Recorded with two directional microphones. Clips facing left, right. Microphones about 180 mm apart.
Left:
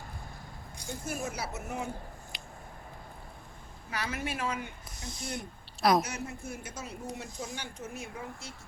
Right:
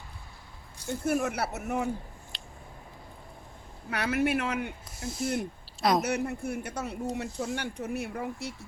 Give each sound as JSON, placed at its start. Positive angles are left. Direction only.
{"t": 1.0, "sound": "speech", "side_deg": -65}
{"t": 2.3, "sound": "a sound", "side_deg": 10}
{"t": 3.8, "sound": "speech", "side_deg": -60}
{"t": 4.9, "sound": "speech", "side_deg": -5}
{"t": 5.4, "sound": "a sound", "side_deg": 0}
{"t": 6.0, "sound": "speech", "side_deg": -65}